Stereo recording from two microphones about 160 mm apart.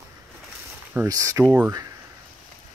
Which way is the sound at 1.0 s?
20° right (ahead or behind).